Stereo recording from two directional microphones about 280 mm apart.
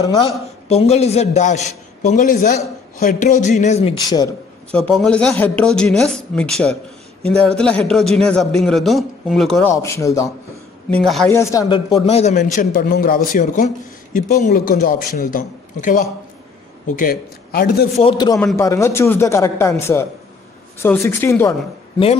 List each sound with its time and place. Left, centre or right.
0.0 s a man's voice: centre
4.6 s a man's voice: centre; by 18.0 s left
18.0 s a man's voice: centre